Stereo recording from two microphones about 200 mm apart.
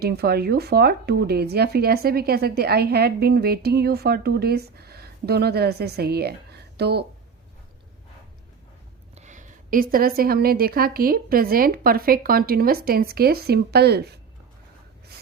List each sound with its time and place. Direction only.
0.0 s speech: 50° right (ahead or behind)
9.1 s speech: 35° right (ahead or behind); by 14.2 s 55° right (ahead or behind)